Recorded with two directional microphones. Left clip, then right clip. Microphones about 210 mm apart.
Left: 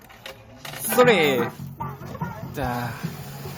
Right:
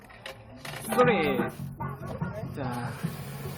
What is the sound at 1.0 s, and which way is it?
Speech, 60° left (ahead or behind).